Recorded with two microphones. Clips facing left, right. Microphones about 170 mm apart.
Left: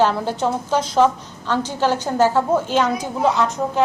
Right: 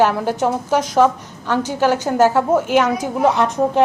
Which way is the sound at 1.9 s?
45° right (ahead or behind).